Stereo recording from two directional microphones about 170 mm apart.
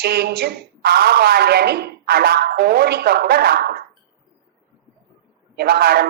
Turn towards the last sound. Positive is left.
turn(degrees=-70)  # may be behind; listen again after turning